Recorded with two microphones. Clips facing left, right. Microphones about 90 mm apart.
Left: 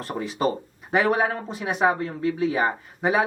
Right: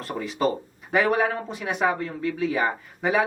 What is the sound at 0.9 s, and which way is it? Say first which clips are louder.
Speech: even; 5° left (ahead or behind).